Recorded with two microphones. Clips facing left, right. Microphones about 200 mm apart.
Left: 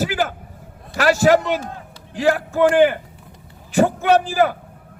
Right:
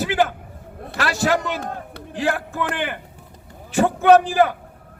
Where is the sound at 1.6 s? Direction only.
55° right (ahead or behind).